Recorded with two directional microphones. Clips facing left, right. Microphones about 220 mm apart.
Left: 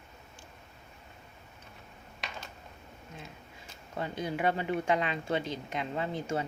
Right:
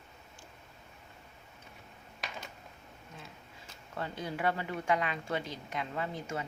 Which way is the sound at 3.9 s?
15° left (ahead or behind).